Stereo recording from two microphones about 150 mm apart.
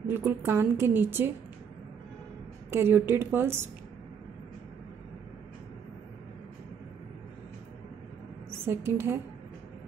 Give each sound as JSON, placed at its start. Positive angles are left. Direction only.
{"t": 0.0, "sound": "a woman's voice", "side_deg": -15}
{"t": 2.7, "sound": "a woman's voice", "side_deg": -15}
{"t": 8.5, "sound": "a woman's voice", "side_deg": -15}